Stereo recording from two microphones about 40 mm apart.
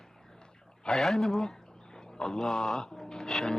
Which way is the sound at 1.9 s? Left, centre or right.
Centre.